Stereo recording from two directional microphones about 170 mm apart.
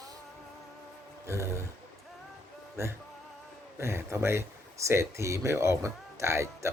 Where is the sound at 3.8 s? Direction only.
15° right (ahead or behind).